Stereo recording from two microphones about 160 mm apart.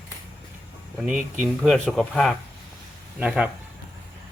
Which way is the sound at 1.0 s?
10° right (ahead or behind).